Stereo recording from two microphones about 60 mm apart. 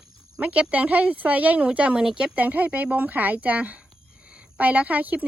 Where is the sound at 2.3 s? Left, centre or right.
Right.